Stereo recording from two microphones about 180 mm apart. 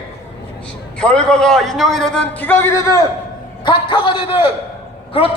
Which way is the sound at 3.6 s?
25° left (ahead or behind).